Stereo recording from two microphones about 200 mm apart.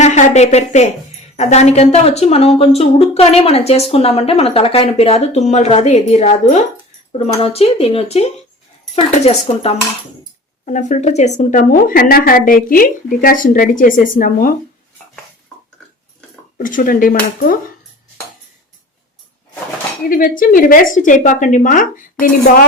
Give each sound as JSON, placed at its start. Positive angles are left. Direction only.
{"t": 0.0, "sound": "a woman's voice", "side_deg": 35}
{"t": 16.6, "sound": "a woman's voice", "side_deg": 45}
{"t": 20.1, "sound": "speech", "side_deg": 45}